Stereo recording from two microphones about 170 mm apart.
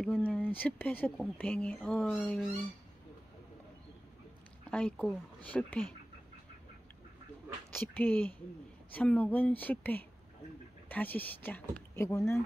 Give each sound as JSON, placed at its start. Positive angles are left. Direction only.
{"t": 0.0, "sound": "speech", "side_deg": 5}
{"t": 2.1, "sound": "speech", "side_deg": 0}
{"t": 4.6, "sound": "speech", "side_deg": 5}
{"t": 7.9, "sound": "speech", "side_deg": 10}